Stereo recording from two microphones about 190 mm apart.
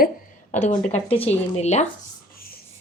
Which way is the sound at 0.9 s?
30° left (ahead or behind).